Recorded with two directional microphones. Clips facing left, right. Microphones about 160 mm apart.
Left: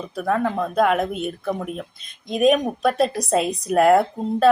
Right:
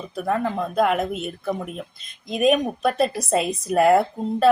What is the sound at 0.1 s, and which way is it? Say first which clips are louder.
Speech: left 1 dB; centre (ahead or behind).